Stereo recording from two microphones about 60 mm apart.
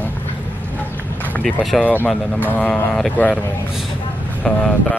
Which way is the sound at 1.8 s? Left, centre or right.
Left.